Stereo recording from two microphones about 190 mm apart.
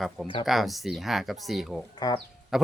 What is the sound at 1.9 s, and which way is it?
Speech, 20° left (ahead or behind).